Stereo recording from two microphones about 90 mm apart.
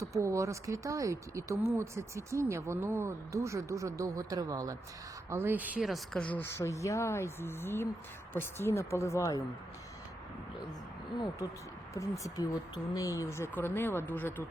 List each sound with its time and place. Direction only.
0.0 s speech: 35° right (ahead or behind)
5.3 s speech: 25° right (ahead or behind)
5.8 s speech: centre (ahead or behind)
6.4 s speech: 35° left (ahead or behind)
11.9 s speech: 35° left (ahead or behind)
13.6 s speech: 25° left (ahead or behind)